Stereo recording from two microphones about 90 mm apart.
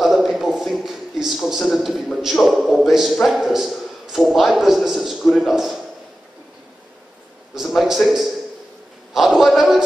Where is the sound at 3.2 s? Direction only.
Centre (ahead or behind).